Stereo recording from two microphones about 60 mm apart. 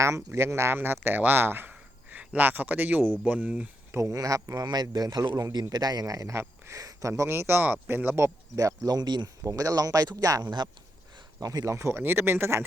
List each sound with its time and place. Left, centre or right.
0.0 s speech: right
2.0 s speech: right
4.1 s speech: right
4.9 s a man's voice: right
6.7 s speech: right
7.3 s speech: right
8.5 s speech: right
11.7 s speech: right
12.0 s speech: right